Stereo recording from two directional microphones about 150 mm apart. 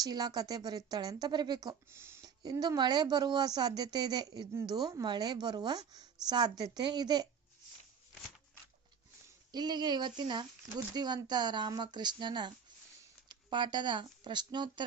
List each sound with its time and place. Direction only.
0.0 s a woman's voice: 25° right (ahead or behind)
1.9 s a woman's voice: 15° right (ahead or behind)
9.5 s a woman's voice: 30° right (ahead or behind)